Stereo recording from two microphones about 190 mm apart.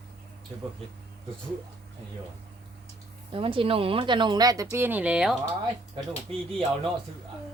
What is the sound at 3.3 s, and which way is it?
Speech, 25° right (ahead or behind).